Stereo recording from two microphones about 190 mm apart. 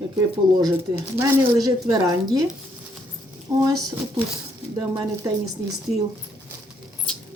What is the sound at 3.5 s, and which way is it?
Speech, 20° right (ahead or behind).